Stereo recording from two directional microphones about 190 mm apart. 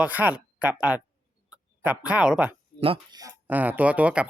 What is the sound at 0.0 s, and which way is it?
Speech, 10° right (ahead or behind).